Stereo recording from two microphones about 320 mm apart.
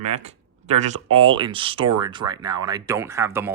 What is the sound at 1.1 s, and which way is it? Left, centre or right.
Speech, centre.